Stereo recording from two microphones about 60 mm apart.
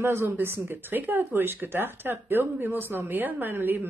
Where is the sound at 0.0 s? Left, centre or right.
Right.